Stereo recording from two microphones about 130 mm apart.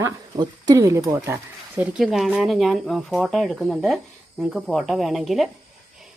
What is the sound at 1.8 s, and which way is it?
Speech, 5° right (ahead or behind).